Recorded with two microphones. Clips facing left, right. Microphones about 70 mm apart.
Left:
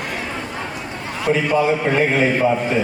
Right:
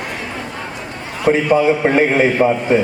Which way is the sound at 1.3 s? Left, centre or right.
Right.